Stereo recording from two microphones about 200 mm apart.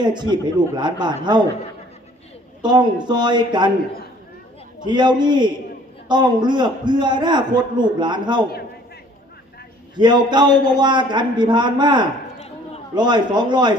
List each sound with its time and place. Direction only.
0.0 s a man's voice: 20° right (ahead or behind)
2.6 s a man's voice: 20° right (ahead or behind)
4.9 s a man's voice: 20° right (ahead or behind)
9.9 s a man's voice: 20° right (ahead or behind)